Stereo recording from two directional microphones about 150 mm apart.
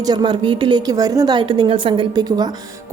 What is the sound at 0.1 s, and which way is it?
A woman's voice, 30° right (ahead or behind).